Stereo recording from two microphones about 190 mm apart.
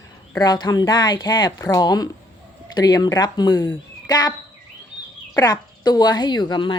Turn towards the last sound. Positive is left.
turn(degrees=25)  # may be behind; listen again after turning